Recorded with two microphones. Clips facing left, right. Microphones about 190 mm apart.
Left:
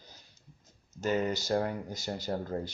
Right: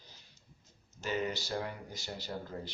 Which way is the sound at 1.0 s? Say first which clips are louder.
Left 5 dB; 45° left (ahead or behind).